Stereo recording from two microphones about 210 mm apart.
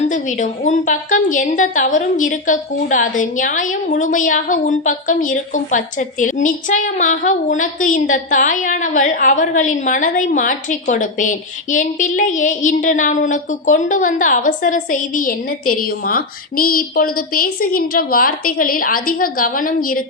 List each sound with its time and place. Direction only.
0.1 s a woman's voice: 35° left (ahead or behind)